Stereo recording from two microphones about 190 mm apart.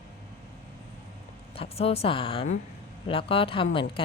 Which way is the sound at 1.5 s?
30° left (ahead or behind).